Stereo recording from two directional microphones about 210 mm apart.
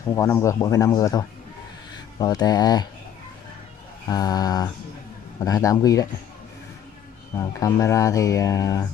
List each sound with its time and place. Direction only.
0.1 s speech: 15° left (ahead or behind)
4.1 s speech: 20° left (ahead or behind)
7.3 s speech: 15° left (ahead or behind)